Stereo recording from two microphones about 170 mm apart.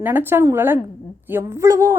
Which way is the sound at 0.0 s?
10° right (ahead or behind).